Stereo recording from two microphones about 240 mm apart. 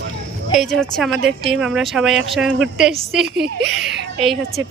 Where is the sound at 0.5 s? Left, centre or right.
Centre.